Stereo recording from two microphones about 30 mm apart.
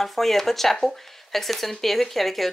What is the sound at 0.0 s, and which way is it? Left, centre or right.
Speech, centre.